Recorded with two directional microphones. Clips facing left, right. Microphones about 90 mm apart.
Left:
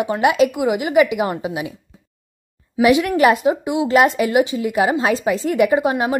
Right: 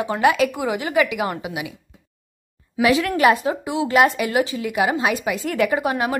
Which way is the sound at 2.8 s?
20° left (ahead or behind).